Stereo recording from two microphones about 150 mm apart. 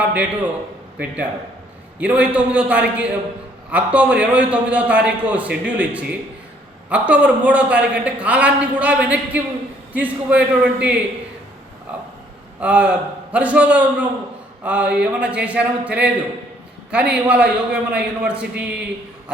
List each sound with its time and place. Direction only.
0.0 s a man's voice: 10° right (ahead or behind)
12.5 s a man's voice: 10° right (ahead or behind)